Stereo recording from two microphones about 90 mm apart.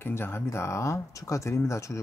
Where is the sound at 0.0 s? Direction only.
25° left (ahead or behind).